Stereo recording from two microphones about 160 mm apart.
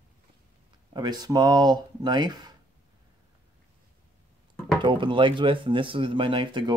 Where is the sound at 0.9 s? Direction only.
25° right (ahead or behind).